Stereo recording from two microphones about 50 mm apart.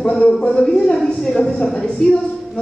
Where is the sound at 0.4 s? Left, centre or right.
Centre.